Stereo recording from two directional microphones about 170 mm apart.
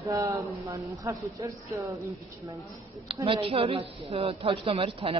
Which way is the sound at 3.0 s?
30° right (ahead or behind).